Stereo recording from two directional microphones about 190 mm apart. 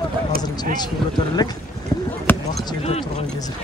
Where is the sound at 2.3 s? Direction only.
10° left (ahead or behind).